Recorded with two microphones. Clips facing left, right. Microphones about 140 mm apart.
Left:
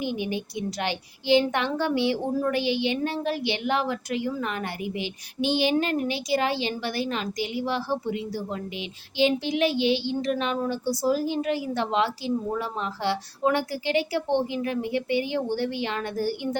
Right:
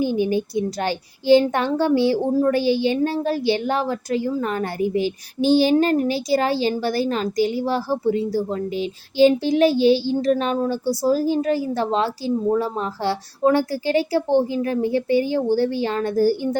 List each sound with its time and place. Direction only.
0.0 s a child's voice: 40° right (ahead or behind)